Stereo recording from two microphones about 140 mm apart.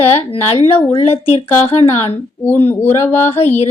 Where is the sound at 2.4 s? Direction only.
15° left (ahead or behind).